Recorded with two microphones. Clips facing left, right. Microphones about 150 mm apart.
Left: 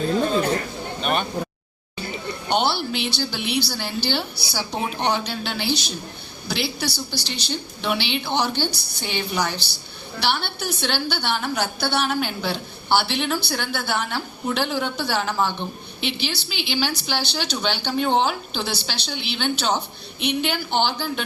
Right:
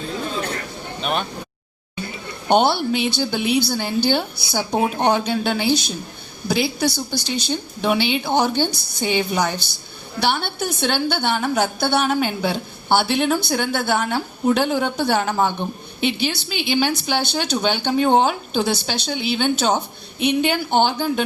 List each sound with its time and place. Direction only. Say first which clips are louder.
1.0 s speech: even; centre (ahead or behind)
2.5 s a woman's voice: right 6 dB; 50° right (ahead or behind)